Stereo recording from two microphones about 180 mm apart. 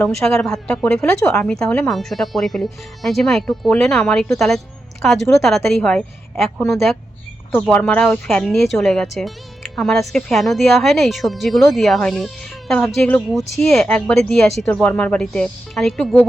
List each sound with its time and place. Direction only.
0.0 s a woman's voice: 5° left (ahead or behind)
7.7 s a woman's voice: 10° left (ahead or behind)